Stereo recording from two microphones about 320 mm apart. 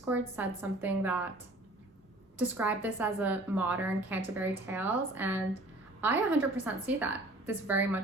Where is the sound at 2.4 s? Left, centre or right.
Centre.